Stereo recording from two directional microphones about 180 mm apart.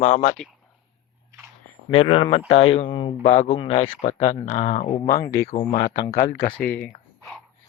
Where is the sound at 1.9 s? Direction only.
30° left (ahead or behind).